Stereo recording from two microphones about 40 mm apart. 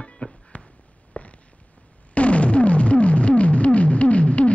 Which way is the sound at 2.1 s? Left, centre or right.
Left.